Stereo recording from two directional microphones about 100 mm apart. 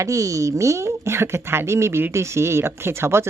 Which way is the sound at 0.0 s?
30° right (ahead or behind).